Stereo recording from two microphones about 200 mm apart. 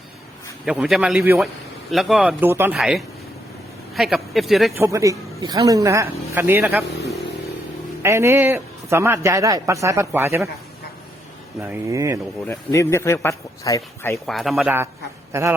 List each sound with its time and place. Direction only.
0.6 s speech: centre (ahead or behind)
4.8 s speech: 15° right (ahead or behind)
8.0 s speech: 15° right (ahead or behind)
11.6 s speech: 10° right (ahead or behind)
12.5 s speech: 15° left (ahead or behind)
14.3 s speech: centre (ahead or behind)
15.3 s a sound: 15° right (ahead or behind)